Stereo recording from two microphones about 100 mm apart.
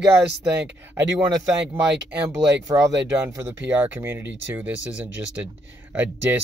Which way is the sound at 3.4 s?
20° right (ahead or behind).